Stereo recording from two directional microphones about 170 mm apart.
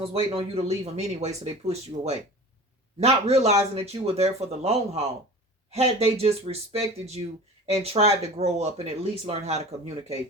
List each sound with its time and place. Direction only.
0.0 s speech: 35° right (ahead or behind)